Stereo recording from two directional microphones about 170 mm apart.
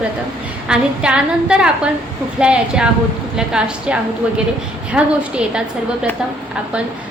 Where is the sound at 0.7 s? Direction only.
5° right (ahead or behind).